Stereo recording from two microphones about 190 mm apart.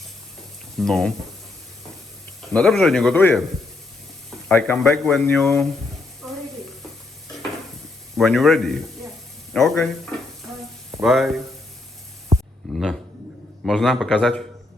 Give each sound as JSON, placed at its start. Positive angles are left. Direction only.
{"t": 0.8, "sound": "speech", "side_deg": 0}
{"t": 2.5, "sound": "speech", "side_deg": 5}
{"t": 4.4, "sound": "speech", "side_deg": 10}
{"t": 8.1, "sound": "speech", "side_deg": 0}
{"t": 12.7, "sound": "a sound", "side_deg": 0}
{"t": 13.7, "sound": "speech", "side_deg": 0}